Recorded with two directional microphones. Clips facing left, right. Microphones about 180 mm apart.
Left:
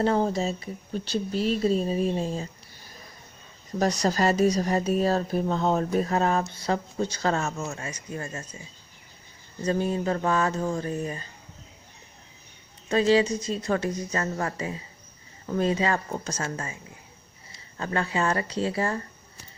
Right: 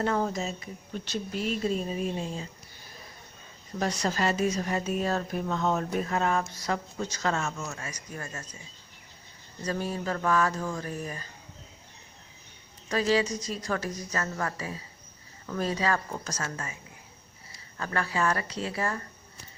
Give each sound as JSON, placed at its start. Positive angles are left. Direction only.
{"t": 0.0, "sound": "speech", "side_deg": 30}
{"t": 3.8, "sound": "speech", "side_deg": 40}
{"t": 9.6, "sound": "speech", "side_deg": 25}
{"t": 12.9, "sound": "speech", "side_deg": 25}